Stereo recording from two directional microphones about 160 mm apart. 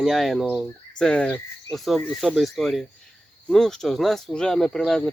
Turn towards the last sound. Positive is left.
turn(degrees=0)  # may be behind; listen again after turning